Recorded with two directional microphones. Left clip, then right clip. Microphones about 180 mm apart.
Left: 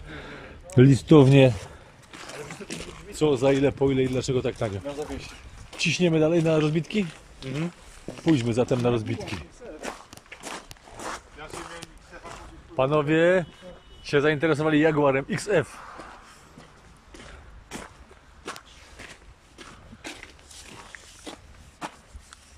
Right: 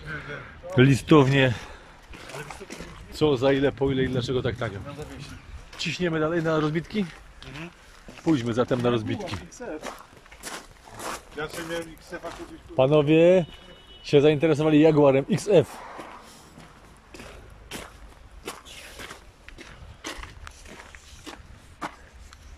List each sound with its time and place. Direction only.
0.7 s speech: centre (ahead or behind)
3.1 s speech: centre (ahead or behind)
11.0 s zipper: 5° right (ahead or behind)
12.7 s speech: 15° right (ahead or behind)